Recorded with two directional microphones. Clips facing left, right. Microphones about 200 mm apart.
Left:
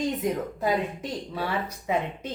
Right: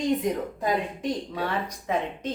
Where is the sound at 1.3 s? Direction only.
5° left (ahead or behind).